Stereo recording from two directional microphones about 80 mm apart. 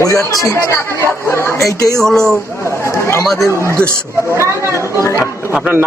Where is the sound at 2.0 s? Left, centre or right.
Centre.